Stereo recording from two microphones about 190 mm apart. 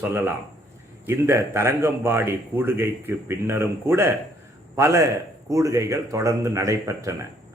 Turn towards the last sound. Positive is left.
turn(degrees=-15)  # may be behind; listen again after turning